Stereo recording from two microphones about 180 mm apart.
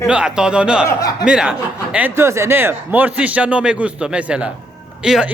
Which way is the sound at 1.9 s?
10° right (ahead or behind).